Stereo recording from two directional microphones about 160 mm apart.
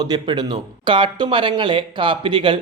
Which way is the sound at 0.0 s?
25° right (ahead or behind).